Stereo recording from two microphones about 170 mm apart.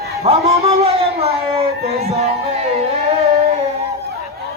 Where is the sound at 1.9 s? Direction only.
40° right (ahead or behind).